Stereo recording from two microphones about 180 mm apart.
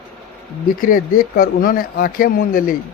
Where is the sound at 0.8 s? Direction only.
50° left (ahead or behind).